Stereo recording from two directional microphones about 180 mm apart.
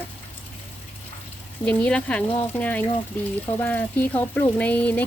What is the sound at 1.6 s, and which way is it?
Speech, 5° left (ahead or behind).